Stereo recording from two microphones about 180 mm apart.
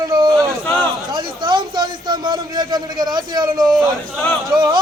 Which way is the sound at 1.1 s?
25° right (ahead or behind).